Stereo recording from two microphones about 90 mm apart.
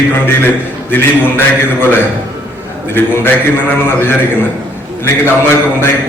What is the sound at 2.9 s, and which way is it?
A man's voice, 25° left (ahead or behind).